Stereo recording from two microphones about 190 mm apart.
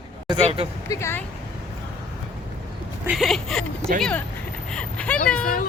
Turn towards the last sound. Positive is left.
turn(degrees=5)  # may be behind; listen again after turning